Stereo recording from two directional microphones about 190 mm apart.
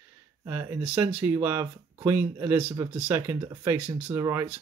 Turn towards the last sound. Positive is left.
turn(degrees=-10)  # may be behind; listen again after turning